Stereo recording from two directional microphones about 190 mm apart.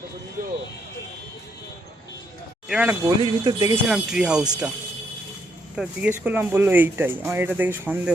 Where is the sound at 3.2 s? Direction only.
20° right (ahead or behind).